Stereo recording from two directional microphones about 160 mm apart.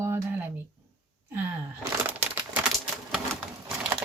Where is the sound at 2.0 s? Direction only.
10° right (ahead or behind).